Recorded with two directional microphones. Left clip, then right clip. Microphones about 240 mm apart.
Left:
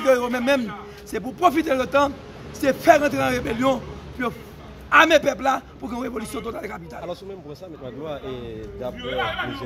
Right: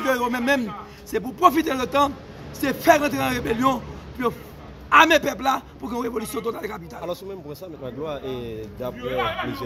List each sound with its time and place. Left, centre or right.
0.0 s a man's voice: centre
7.8 s speech: right
9.0 s a man's voice: left